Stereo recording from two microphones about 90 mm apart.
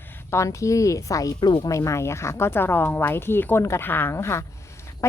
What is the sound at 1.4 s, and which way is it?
Speech, 50° left (ahead or behind).